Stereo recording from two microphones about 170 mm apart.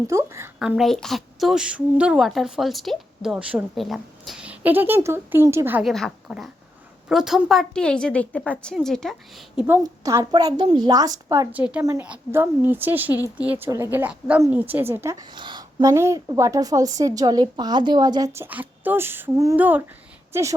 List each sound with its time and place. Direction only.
0.1 s a woman's voice: 15° right (ahead or behind)
0.6 s a woman's voice: centre (ahead or behind)
5.8 s a woman's voice: centre (ahead or behind)
9.6 s a woman's voice: 15° right (ahead or behind)